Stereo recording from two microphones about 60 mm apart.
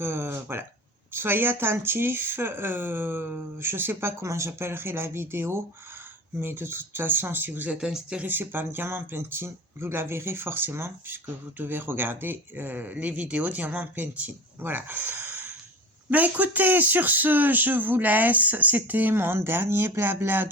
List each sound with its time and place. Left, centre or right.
0.0 s speech: right
4.2 s speech: right
7.8 s speech: centre
8.2 s speech: right